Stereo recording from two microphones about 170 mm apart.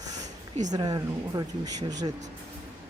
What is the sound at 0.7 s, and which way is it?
Speech, 25° right (ahead or behind).